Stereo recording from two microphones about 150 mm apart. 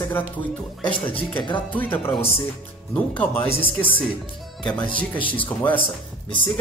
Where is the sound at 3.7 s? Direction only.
10° left (ahead or behind).